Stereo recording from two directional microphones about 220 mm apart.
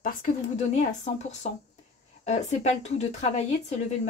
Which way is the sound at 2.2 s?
30° left (ahead or behind).